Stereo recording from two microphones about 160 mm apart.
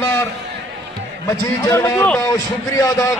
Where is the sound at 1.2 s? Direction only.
20° left (ahead or behind).